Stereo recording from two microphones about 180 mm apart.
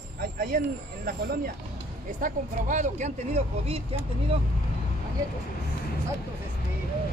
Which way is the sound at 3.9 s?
35° right (ahead or behind).